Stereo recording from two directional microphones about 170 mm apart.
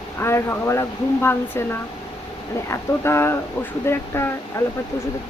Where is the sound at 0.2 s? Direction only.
15° left (ahead or behind).